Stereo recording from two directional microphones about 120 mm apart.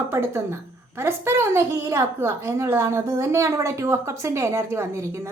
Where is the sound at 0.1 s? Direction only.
20° right (ahead or behind).